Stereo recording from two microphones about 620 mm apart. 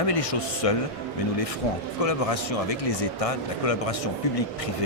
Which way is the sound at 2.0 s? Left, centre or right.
Left.